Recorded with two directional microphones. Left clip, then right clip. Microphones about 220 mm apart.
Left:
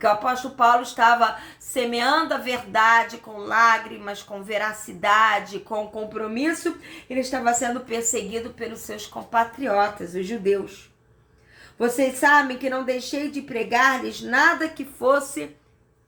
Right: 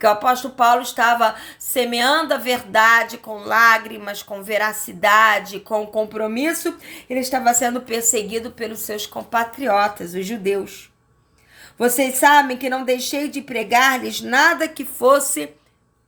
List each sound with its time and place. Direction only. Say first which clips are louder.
0.0 s a woman's voice: right 5 dB; 45° right (ahead or behind)
11.8 s a woman's voice: right 4 dB; 50° right (ahead or behind)